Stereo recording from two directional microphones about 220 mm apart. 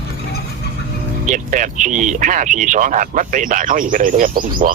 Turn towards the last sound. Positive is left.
turn(degrees=-35)  # may be behind; listen again after turning